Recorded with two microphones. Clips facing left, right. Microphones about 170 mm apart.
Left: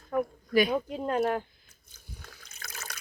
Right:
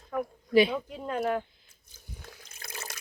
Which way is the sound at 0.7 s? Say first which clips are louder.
Left 4 dB; 40° left (ahead or behind).